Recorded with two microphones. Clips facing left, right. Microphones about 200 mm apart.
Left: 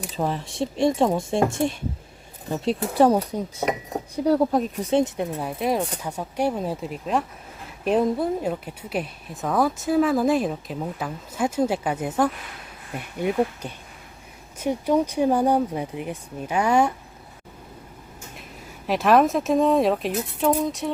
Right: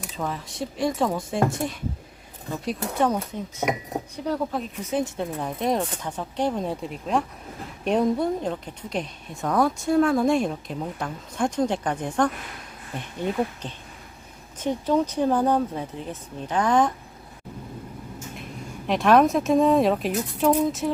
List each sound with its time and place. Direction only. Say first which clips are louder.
0.2 s speech: left 4 dB; 30° left (ahead or behind)
3.0 s speech: left 6 dB; 35° left (ahead or behind)
5.2 s speech: left 1 dB; 10° left (ahead or behind)
18.9 s speech: even; centre (ahead or behind)